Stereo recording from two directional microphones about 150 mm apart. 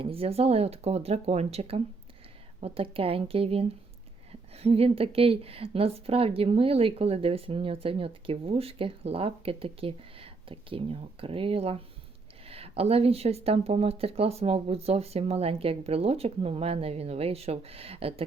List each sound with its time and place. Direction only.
0.0 s a woman's voice: 40° right (ahead or behind)